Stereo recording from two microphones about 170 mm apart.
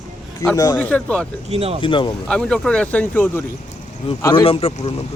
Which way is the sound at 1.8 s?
30° left (ahead or behind).